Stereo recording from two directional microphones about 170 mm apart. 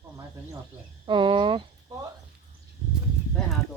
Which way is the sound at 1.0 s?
30° right (ahead or behind).